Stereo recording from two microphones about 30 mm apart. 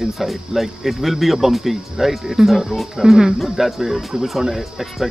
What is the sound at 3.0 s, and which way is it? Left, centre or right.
Speech, centre.